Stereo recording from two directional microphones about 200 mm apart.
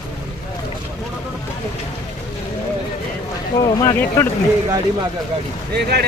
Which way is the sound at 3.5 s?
20° left (ahead or behind).